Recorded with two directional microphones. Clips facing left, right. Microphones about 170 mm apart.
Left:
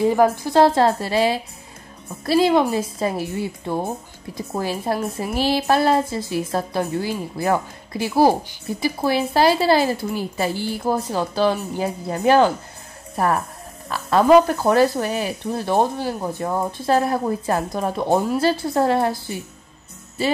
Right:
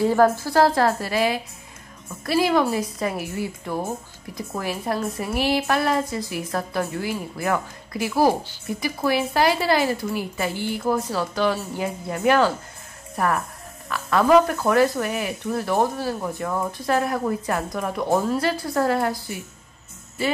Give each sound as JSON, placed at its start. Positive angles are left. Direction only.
{"t": 0.0, "sound": "a woman's voice", "side_deg": 15}